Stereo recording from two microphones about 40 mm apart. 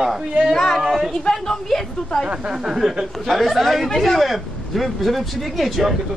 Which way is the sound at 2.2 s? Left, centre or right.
Right.